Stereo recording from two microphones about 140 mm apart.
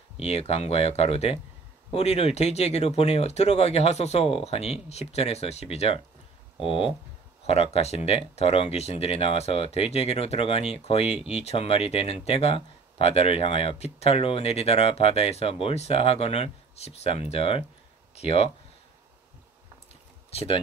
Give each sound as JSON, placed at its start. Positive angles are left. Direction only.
{"t": 0.2, "sound": "speech", "side_deg": 45}
{"t": 20.2, "sound": "speech", "side_deg": 45}